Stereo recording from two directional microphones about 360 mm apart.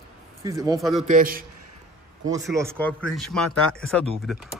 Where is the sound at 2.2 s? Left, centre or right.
Centre.